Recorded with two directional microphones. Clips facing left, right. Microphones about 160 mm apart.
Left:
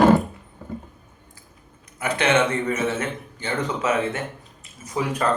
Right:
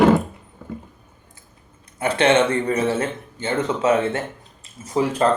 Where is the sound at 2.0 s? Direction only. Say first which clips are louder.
Right 4 dB; 30° right (ahead or behind).